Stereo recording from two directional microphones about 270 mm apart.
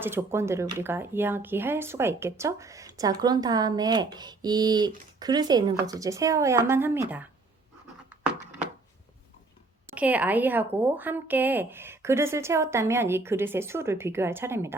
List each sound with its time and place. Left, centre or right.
0.0 s speech: centre
9.8 s a woman's voice: centre